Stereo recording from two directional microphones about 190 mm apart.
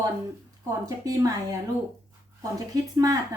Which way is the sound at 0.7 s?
15° right (ahead or behind).